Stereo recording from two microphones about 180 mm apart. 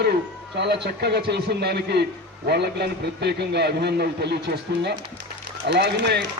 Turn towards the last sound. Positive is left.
turn(degrees=-70)  # may be behind; listen again after turning